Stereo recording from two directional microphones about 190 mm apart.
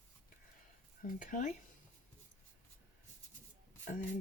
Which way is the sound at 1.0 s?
45° left (ahead or behind).